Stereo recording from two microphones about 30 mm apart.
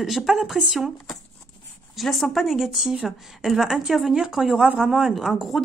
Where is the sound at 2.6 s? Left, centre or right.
Centre.